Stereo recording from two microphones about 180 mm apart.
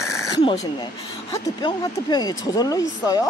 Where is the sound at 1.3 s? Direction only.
25° left (ahead or behind).